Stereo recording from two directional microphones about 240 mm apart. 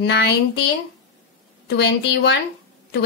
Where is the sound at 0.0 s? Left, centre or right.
Left.